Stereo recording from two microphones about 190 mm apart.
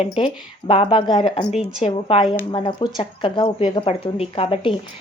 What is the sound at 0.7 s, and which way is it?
Speech, 25° left (ahead or behind).